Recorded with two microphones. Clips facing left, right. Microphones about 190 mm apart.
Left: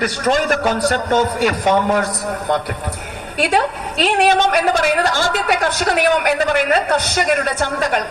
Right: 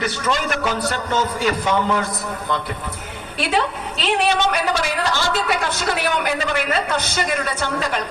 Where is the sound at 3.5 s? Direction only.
50° left (ahead or behind).